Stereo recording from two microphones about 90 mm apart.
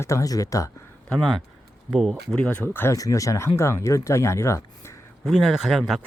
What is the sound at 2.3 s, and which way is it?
Speech, 15° left (ahead or behind).